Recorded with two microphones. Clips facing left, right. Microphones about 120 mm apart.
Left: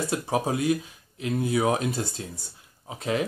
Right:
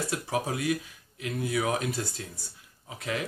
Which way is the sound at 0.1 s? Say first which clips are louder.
Left 4 dB; 25° left (ahead or behind).